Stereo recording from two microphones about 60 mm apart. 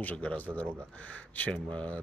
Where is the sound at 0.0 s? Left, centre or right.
Left.